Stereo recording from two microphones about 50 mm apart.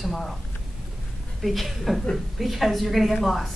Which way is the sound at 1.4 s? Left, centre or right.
Centre.